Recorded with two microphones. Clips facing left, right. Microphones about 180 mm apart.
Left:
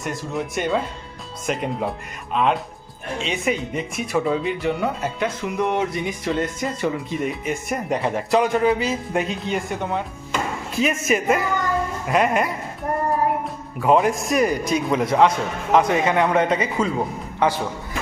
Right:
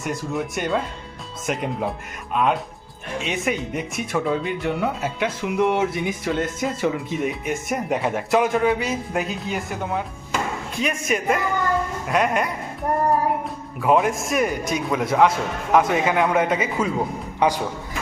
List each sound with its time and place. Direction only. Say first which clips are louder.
0.0 s a man's voice: right 1 dB; centre (ahead or behind)